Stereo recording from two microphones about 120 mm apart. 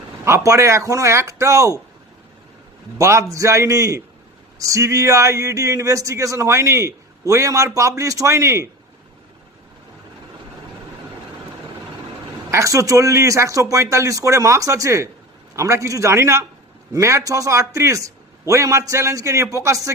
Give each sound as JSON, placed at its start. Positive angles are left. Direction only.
{"t": 0.3, "sound": "speech", "side_deg": -25}
{"t": 3.0, "sound": "speech", "side_deg": -25}
{"t": 12.5, "sound": "speech", "side_deg": -25}